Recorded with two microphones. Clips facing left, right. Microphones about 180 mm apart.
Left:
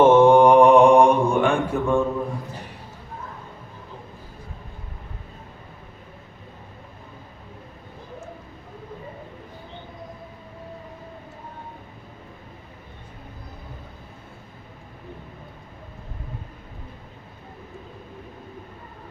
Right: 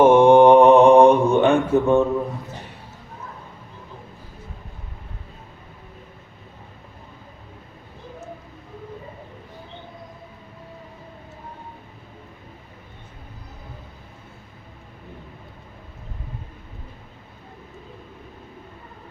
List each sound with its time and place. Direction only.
0.0 s mantra: 15° right (ahead or behind)